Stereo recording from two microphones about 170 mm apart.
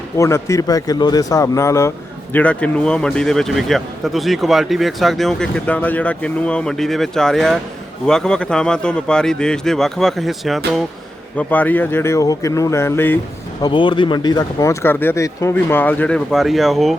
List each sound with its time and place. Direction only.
0.2 s speech: 15° left (ahead or behind)
2.3 s speech: 5° left (ahead or behind)
13.6 s speech: 30° left (ahead or behind); by 16.9 s centre (ahead or behind)